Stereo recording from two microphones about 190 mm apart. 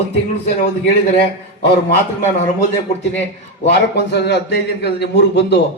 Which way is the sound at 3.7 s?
60° left (ahead or behind).